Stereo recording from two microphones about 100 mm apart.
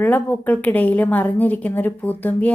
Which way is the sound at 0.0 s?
15° left (ahead or behind).